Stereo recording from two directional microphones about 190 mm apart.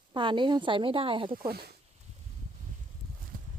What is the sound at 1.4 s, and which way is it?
Speech, 55° right (ahead or behind).